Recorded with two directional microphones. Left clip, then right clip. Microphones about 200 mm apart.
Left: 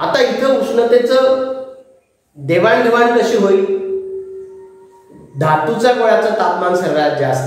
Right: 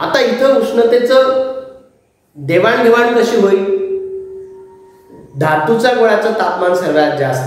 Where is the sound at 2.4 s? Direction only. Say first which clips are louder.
Right 1 dB; 20° right (ahead or behind).